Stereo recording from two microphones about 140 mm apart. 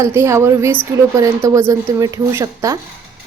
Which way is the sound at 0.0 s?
20° right (ahead or behind).